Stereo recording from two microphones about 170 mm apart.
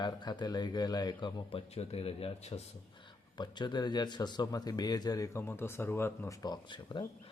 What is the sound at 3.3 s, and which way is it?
A man's voice, 25° left (ahead or behind).